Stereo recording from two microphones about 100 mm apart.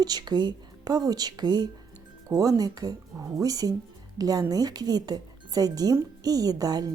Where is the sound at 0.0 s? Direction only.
45° right (ahead or behind).